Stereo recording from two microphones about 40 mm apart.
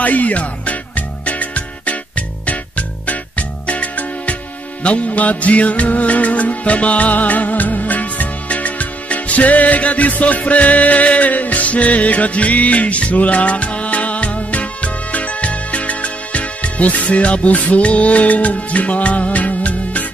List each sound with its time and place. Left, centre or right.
0.0 s music: left